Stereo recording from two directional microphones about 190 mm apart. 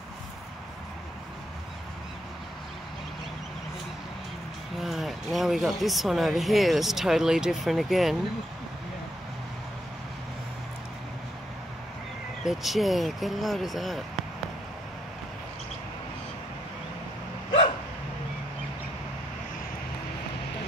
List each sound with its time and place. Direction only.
4.7 s speech: centre (ahead or behind)
12.4 s speech: centre (ahead or behind)
17.5 s dog: 30° left (ahead or behind)